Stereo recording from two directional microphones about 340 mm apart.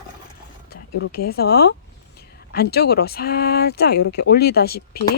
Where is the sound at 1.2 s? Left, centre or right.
Left.